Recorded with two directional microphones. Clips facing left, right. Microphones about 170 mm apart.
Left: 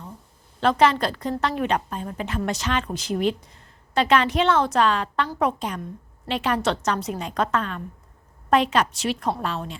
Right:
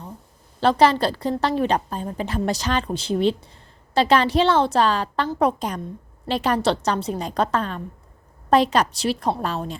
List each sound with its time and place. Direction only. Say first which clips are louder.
0.6 s a woman's voice: right 2 dB; 35° right (ahead or behind)